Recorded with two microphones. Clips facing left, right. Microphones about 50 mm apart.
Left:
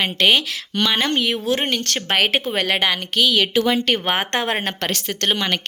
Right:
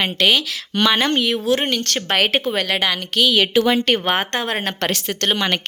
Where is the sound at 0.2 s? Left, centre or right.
Centre.